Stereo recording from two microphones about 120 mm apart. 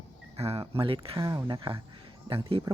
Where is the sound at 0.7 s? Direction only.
50° right (ahead or behind).